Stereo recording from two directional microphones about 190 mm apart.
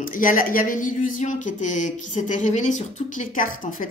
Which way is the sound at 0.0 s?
45° left (ahead or behind).